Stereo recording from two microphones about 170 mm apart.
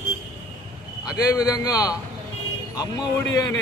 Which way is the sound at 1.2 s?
20° left (ahead or behind).